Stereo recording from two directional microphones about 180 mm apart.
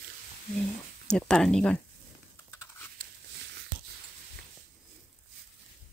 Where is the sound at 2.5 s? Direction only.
15° left (ahead or behind).